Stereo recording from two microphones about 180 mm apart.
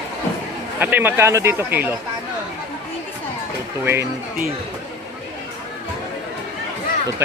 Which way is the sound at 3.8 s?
15° right (ahead or behind).